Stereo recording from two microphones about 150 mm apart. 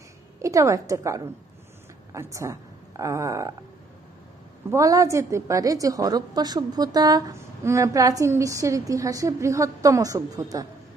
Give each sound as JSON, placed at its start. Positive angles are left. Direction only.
{"t": 0.4, "sound": "a woman's voice", "side_deg": -20}
{"t": 4.6, "sound": "a woman's voice", "side_deg": -20}